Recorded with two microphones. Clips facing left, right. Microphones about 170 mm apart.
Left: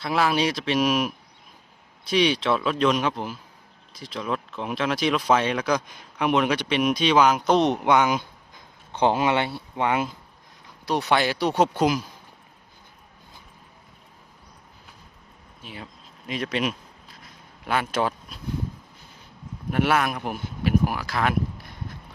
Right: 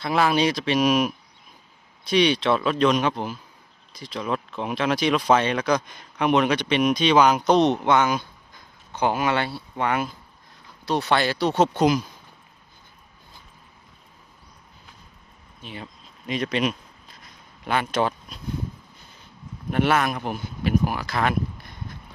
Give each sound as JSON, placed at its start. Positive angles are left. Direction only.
{"t": 0.0, "sound": "speech", "side_deg": 0}
{"t": 15.6, "sound": "a sound", "side_deg": 5}
{"t": 17.7, "sound": "speech", "side_deg": 5}
{"t": 19.7, "sound": "speech", "side_deg": 5}